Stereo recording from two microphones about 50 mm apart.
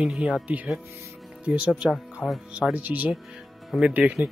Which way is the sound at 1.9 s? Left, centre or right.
Centre.